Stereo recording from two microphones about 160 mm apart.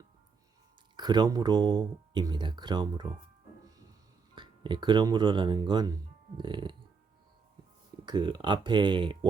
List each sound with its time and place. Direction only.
0.9 s speech: 25° right (ahead or behind)
4.4 s speech: 30° right (ahead or behind)
8.0 s speech: 25° right (ahead or behind)